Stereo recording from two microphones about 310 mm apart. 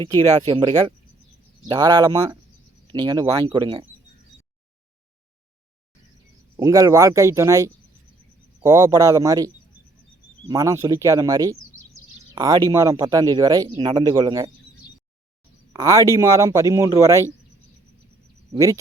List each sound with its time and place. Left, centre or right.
0.0 s speech: centre
6.6 s speech: centre
10.5 s speech: centre
15.7 s speech: centre
18.5 s speech: centre